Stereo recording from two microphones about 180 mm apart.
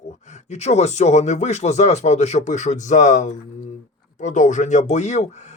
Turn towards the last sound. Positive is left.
turn(degrees=40)  # may be behind; listen again after turning